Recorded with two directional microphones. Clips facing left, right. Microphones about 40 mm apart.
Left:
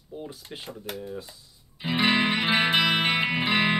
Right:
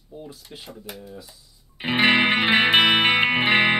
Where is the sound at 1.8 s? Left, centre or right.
Right.